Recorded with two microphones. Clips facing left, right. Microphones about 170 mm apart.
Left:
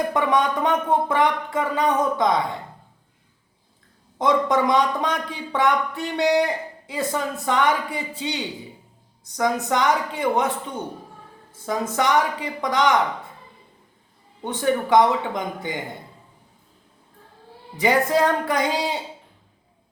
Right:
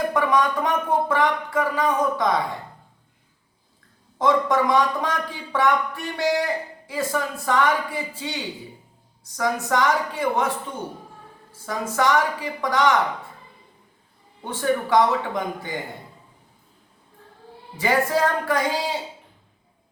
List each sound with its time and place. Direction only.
0.1 s a man's voice: 20° left (ahead or behind)
4.2 s a man's voice: 20° left (ahead or behind)
11.6 s a man's voice: 20° left (ahead or behind)
14.4 s a man's voice: 20° left (ahead or behind)
17.7 s a man's voice: 20° left (ahead or behind)